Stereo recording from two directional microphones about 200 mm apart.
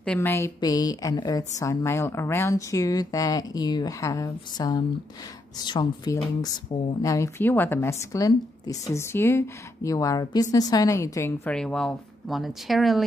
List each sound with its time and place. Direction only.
0.0 s a woman's voice: 10° left (ahead or behind)